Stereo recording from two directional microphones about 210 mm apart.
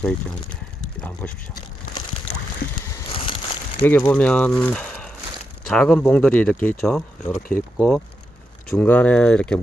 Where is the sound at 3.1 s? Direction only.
25° left (ahead or behind).